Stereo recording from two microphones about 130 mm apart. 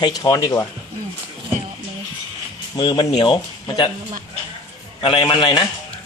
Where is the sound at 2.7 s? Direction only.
35° left (ahead or behind).